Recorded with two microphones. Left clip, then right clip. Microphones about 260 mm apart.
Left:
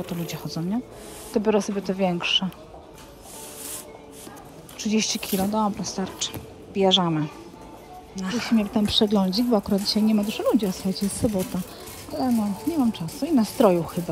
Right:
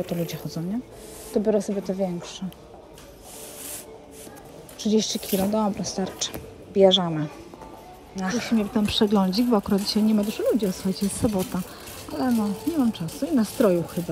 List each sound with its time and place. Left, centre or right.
0.0 s speech: centre
1.8 s speech: left
4.8 s speech: centre